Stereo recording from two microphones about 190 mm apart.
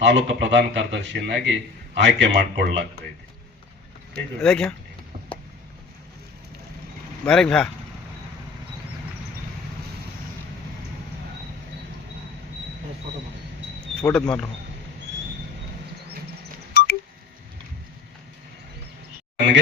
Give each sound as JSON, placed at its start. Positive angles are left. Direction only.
{"t": 0.0, "sound": "speech", "side_deg": -65}
{"t": 4.4, "sound": "speech", "side_deg": 5}
{"t": 7.3, "sound": "speech", "side_deg": 5}
{"t": 14.0, "sound": "speech", "side_deg": 5}
{"t": 16.7, "sound": "a sound", "side_deg": 55}